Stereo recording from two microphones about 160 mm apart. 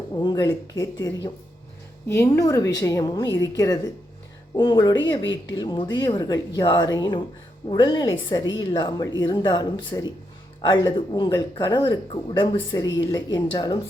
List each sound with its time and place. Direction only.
0.2 s speech: 25° left (ahead or behind)